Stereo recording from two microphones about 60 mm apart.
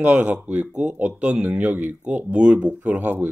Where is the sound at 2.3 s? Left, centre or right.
Centre.